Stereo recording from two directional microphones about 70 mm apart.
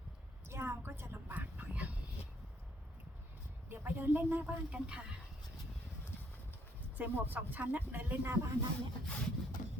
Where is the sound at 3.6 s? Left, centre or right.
Right.